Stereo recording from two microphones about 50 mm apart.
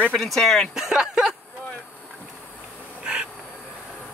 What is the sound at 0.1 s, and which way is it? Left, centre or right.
Speech, centre.